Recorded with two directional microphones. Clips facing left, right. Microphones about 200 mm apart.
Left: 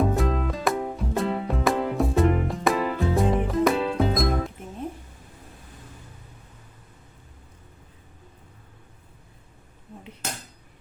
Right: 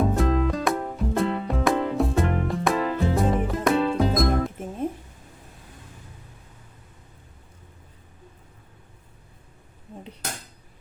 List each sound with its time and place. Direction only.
0.0 s music: centre (ahead or behind)